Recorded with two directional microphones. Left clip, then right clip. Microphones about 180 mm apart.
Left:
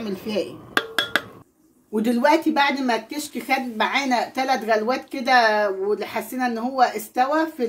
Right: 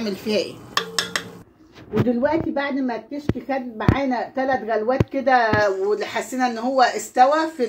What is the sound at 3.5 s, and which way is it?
A woman's voice, 75° left (ahead or behind).